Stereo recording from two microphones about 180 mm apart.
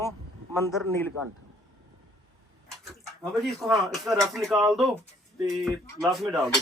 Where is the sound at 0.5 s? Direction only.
15° left (ahead or behind).